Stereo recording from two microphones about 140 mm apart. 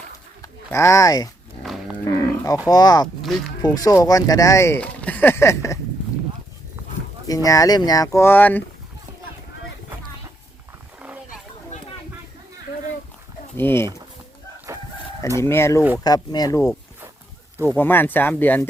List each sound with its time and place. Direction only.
0.4 s speech: 20° left (ahead or behind)
1.6 s cattle: centre (ahead or behind)
2.0 s livestock: 25° left (ahead or behind)
2.6 s speech: 30° left (ahead or behind)
3.2 s speech: centre (ahead or behind)
3.6 s speech: 25° left (ahead or behind)
4.8 s a sound: 10° left (ahead or behind)
7.3 s speech: 25° left (ahead or behind)
11.7 s a sound: 55° left (ahead or behind)
13.6 s speech: 15° left (ahead or behind)
15.4 s speech: 20° left (ahead or behind)